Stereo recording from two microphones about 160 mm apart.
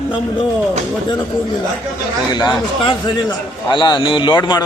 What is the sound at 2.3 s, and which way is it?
Speech, 25° left (ahead or behind).